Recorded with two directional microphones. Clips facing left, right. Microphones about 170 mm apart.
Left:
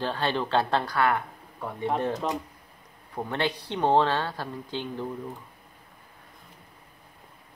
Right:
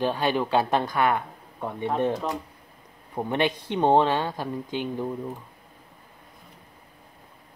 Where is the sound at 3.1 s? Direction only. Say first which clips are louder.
Right 4 dB; 15° right (ahead or behind).